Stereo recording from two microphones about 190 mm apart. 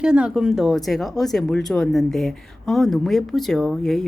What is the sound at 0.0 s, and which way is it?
Speech, 5° right (ahead or behind).